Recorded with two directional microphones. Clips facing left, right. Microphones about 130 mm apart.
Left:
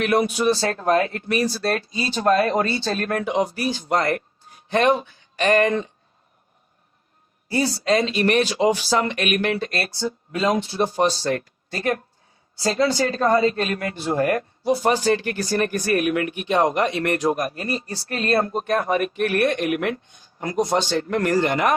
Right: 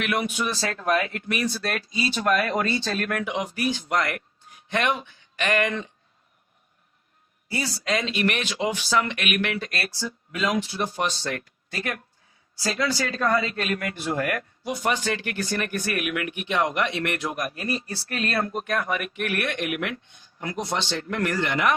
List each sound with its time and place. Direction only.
0.0 s speech: 35° left (ahead or behind)
7.5 s speech: 35° left (ahead or behind)